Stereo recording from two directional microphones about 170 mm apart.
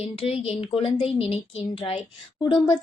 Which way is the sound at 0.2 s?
35° left (ahead or behind).